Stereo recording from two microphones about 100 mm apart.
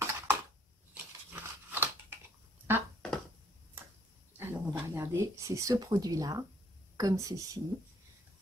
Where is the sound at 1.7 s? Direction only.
20° right (ahead or behind).